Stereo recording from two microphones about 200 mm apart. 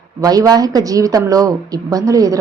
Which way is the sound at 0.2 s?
20° right (ahead or behind).